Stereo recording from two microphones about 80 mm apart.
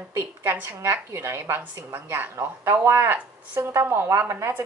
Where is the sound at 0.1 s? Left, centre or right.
Right.